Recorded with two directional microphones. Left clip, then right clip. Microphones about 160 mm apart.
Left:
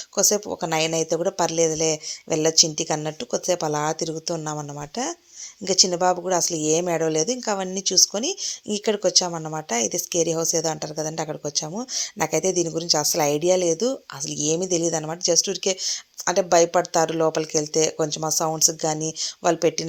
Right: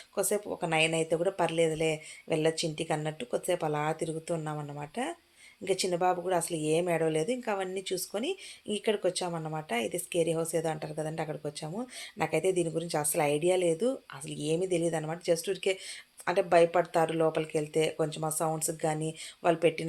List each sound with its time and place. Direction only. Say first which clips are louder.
0.2 s speech: left 9 dB; 35° left (ahead or behind)